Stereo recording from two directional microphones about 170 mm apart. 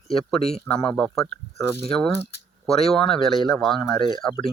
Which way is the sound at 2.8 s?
35° left (ahead or behind).